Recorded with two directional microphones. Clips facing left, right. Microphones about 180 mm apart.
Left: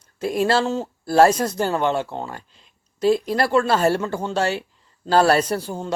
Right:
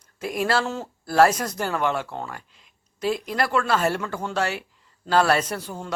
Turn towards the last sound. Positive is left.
turn(degrees=30)  # may be behind; listen again after turning